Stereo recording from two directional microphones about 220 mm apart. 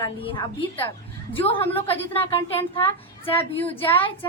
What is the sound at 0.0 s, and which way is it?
A woman's voice, 20° left (ahead or behind).